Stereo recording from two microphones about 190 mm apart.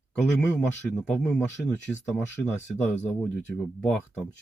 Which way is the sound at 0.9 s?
5° left (ahead or behind).